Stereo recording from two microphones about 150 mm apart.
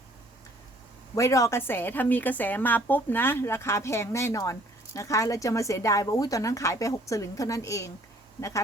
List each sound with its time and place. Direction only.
1.1 s a woman's voice: 20° left (ahead or behind)